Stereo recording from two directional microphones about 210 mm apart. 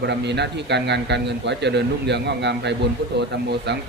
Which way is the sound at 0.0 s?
55° right (ahead or behind).